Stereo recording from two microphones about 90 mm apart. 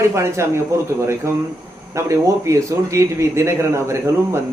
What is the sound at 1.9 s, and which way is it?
A man's voice, 35° right (ahead or behind).